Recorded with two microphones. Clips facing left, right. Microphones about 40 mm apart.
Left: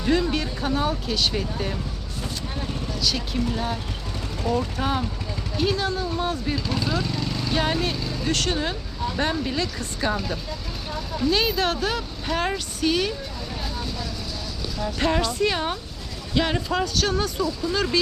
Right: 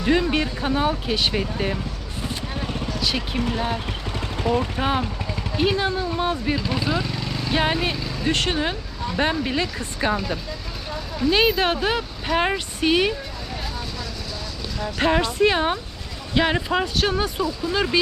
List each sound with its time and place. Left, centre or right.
0.0 s speech: right
11.3 s speech: right
14.9 s speech: right